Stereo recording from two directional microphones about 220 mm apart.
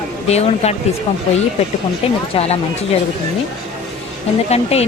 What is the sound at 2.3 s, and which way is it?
Speech, 30° left (ahead or behind).